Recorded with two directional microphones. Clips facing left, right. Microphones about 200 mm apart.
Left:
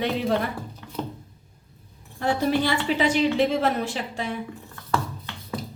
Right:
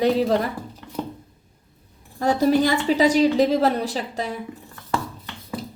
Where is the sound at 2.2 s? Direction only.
40° right (ahead or behind).